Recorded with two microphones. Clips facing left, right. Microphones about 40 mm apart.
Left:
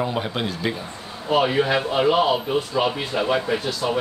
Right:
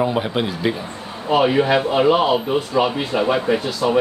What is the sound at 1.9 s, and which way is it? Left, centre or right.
Speech, centre.